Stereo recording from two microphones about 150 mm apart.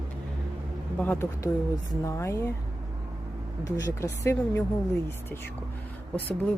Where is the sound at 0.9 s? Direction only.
10° left (ahead or behind).